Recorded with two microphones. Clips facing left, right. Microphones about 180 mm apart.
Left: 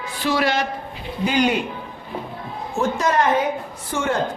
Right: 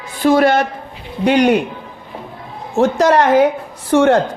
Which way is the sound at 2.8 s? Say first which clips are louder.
Right 8 dB; 75° right (ahead or behind).